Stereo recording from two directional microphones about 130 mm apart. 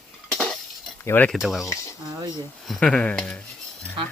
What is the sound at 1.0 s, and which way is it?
Speech, 15° left (ahead or behind).